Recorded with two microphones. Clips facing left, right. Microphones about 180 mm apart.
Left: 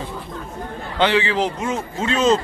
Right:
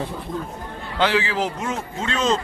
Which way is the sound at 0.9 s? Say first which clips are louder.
Left 3 dB; 5° right (ahead or behind).